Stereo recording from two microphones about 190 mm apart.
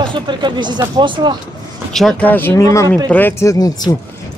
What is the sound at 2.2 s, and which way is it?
Speech, 10° left (ahead or behind).